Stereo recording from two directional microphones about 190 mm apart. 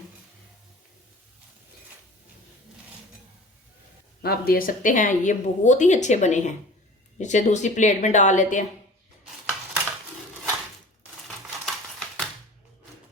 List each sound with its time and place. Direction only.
4.2 s speech: 55° left (ahead or behind)
11.6 s typewriter: centre (ahead or behind)